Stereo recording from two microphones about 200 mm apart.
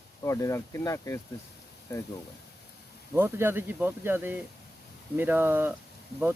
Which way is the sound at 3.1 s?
10° right (ahead or behind).